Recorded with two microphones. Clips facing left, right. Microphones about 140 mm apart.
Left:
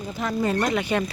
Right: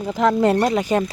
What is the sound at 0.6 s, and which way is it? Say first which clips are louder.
Speech: right 5 dB; 40° right (ahead or behind).